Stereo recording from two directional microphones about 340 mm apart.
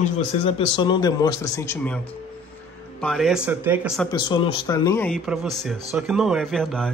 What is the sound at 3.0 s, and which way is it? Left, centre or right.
Speech, centre.